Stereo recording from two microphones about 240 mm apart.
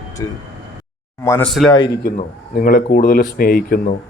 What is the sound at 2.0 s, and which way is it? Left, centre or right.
Speech, left.